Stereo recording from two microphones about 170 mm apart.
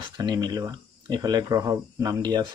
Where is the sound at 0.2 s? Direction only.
25° right (ahead or behind).